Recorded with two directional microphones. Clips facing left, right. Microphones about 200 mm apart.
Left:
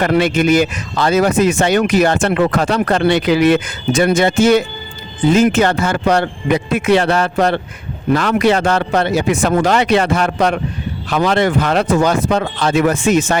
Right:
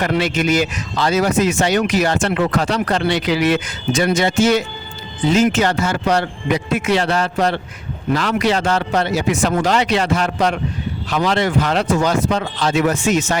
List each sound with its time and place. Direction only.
0.0 s speech: 55° left (ahead or behind)